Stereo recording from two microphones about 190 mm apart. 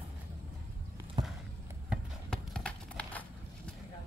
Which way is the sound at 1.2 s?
20° right (ahead or behind).